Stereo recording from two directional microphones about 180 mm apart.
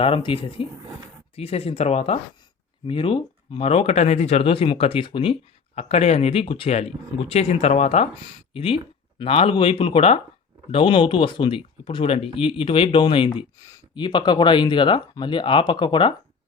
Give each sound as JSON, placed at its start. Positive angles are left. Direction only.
{"t": 0.0, "sound": "speech", "side_deg": 30}